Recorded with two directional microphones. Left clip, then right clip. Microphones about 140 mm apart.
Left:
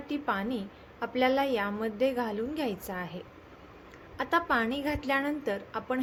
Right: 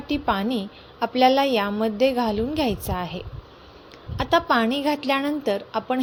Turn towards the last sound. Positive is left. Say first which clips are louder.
# right 8 dB
turn(degrees=-40)  # may be behind; listen again after turning